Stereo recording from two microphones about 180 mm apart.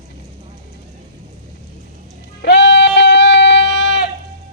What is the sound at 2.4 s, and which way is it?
Music, 75° left (ahead or behind).